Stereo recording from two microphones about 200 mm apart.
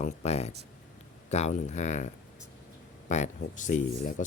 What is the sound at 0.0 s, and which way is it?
Speech, 35° left (ahead or behind).